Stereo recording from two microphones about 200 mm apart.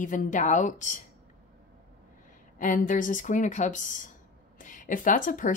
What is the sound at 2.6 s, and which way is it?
A woman's voice, 40° left (ahead or behind).